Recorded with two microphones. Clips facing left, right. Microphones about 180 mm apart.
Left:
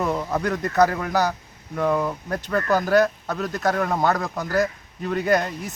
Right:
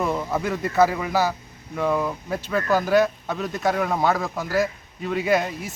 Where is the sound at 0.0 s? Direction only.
Centre (ahead or behind).